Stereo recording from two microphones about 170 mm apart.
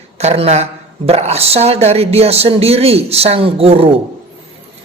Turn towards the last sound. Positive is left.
turn(degrees=-35)  # may be behind; listen again after turning